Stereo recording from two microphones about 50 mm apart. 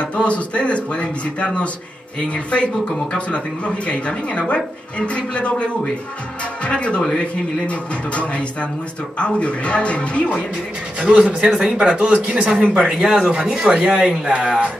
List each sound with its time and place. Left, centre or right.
0.0 s a man's voice: left
11.0 s speech: right
12.7 s speech: centre
13.3 s speech: right